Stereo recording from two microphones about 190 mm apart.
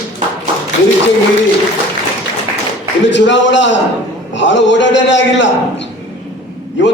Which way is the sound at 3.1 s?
70° left (ahead or behind).